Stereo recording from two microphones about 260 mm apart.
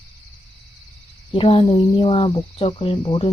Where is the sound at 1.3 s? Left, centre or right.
Left.